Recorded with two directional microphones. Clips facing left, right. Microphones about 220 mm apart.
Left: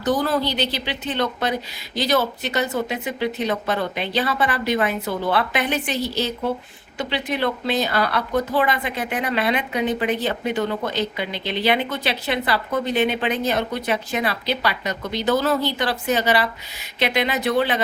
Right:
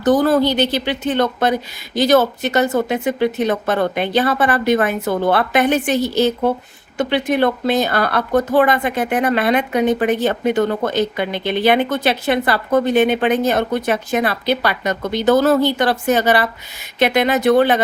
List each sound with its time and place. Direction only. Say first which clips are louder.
0.0 s speech: right 7 dB; 50° right (ahead or behind)